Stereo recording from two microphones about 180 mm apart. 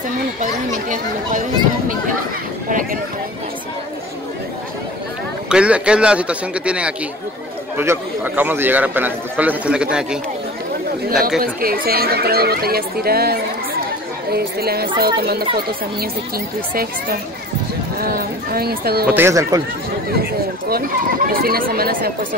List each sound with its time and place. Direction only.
0.4 s speech: 45° right (ahead or behind)
5.5 s a man's voice: 5° right (ahead or behind)
11.2 s speech: 55° right (ahead or behind)
18.0 s speech: 55° right (ahead or behind)
19.1 s a man's voice: 15° right (ahead or behind)
21.3 s speech: 55° right (ahead or behind)